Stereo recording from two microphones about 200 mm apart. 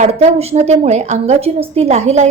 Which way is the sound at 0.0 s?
35° right (ahead or behind).